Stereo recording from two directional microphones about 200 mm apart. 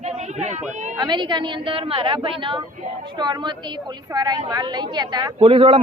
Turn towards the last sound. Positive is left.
turn(degrees=-25)  # may be behind; listen again after turning